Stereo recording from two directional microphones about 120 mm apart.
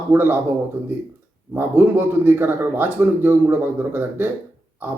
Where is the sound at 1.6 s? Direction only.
15° right (ahead or behind).